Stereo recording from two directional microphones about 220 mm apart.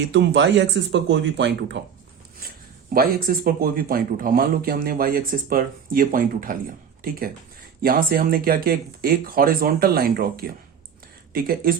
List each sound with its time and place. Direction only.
0.1 s speech: 55° right (ahead or behind)
2.9 s speech: 40° right (ahead or behind)